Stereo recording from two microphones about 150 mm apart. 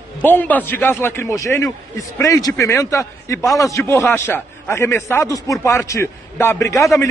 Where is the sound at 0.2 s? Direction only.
10° left (ahead or behind).